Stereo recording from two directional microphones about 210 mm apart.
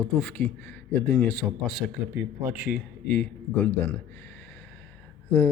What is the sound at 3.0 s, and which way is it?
Speech, 5° left (ahead or behind).